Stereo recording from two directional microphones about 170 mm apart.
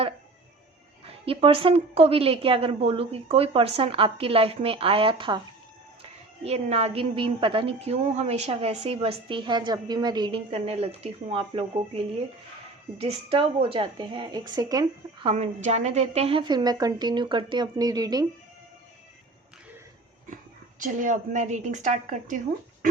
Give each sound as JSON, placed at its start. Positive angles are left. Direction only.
{"t": 1.2, "sound": "a woman's voice", "side_deg": -35}
{"t": 15.3, "sound": "a woman's voice", "side_deg": -40}
{"t": 20.3, "sound": "a woman's voice", "side_deg": -50}